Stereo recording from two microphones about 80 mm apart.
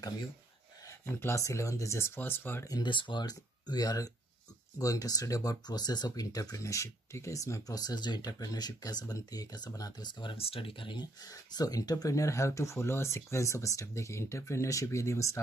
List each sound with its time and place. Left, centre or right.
1.0 s speech: left
2.8 s speech: left
11.2 s speech: left